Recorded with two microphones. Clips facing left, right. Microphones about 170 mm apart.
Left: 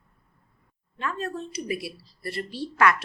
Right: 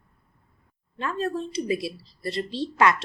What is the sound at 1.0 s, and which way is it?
Speech, 30° right (ahead or behind).